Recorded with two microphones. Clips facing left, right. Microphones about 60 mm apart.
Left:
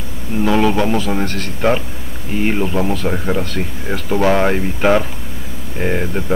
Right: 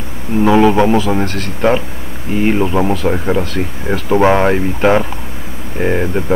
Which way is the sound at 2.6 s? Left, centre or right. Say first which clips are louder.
Right 4 dB; centre.